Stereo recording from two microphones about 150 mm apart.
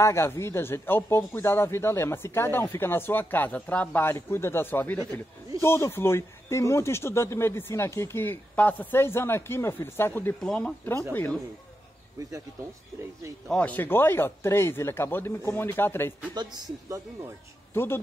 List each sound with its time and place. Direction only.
0.0 s speech: 20° left (ahead or behind)
10.4 s speech: 5° left (ahead or behind)
13.5 s speech: 10° left (ahead or behind)
17.7 s speech: 15° left (ahead or behind)